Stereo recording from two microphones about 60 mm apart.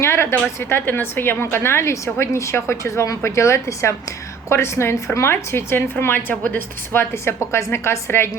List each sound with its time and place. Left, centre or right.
0.0 s a woman's voice: left
0.7 s a woman's voice: left